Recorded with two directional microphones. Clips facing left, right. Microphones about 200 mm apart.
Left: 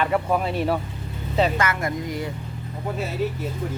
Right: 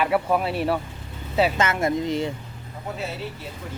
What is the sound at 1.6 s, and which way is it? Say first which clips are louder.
Speech: right 3 dB; 25° right (ahead or behind).